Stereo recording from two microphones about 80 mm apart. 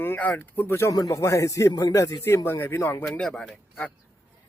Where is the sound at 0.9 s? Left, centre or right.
Left.